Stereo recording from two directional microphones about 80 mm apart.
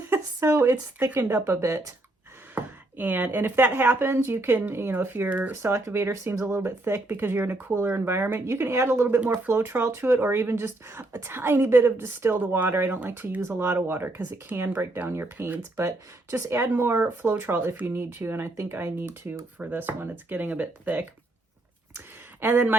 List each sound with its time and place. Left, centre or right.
0.1 s speech: right
2.6 s speech: right
5.6 s speech: right
13.9 s speech: right
15.7 s speech: right
21.9 s a sound: right